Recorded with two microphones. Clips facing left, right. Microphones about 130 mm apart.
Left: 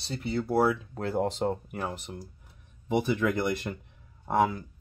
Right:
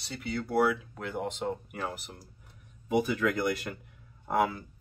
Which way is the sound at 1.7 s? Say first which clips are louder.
Left 2 dB; 20° left (ahead or behind).